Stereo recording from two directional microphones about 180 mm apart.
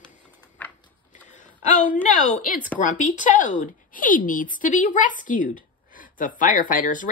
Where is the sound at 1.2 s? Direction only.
40° left (ahead or behind).